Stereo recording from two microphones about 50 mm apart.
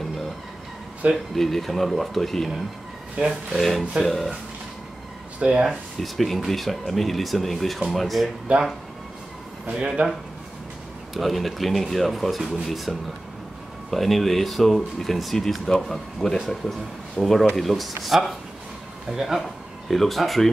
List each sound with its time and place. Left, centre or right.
1.1 s speech: centre
3.3 s speech: centre
4.0 s speech: centre
5.4 s speech: centre
5.9 s speech: centre
8.5 s speech: right
9.7 s speech: centre
11.1 s speech: centre